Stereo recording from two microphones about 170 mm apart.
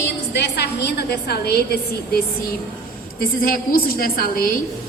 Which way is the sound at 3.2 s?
60° left (ahead or behind).